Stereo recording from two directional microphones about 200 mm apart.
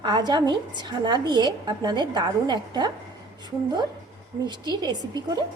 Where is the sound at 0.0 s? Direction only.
20° right (ahead or behind).